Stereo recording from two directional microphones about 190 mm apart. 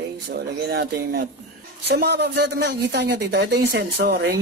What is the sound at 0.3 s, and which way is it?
Speech, 55° right (ahead or behind).